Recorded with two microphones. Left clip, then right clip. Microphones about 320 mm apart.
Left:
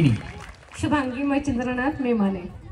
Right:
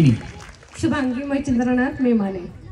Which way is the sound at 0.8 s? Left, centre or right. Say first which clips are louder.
Right 1 dB; left.